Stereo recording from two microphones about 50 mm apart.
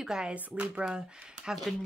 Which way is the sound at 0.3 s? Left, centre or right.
Right.